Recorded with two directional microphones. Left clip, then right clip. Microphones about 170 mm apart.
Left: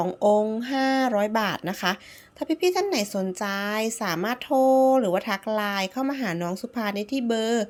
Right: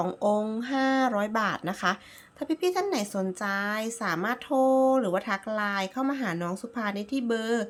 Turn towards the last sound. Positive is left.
turn(degrees=15)  # may be behind; listen again after turning